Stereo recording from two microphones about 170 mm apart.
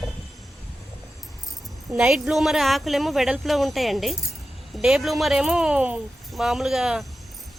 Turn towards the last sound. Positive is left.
turn(degrees=0)  # may be behind; listen again after turning